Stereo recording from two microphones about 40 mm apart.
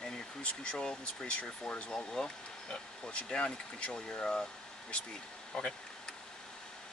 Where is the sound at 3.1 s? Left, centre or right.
Left.